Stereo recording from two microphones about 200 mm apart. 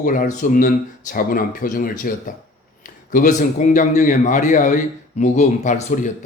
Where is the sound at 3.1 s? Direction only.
35° left (ahead or behind).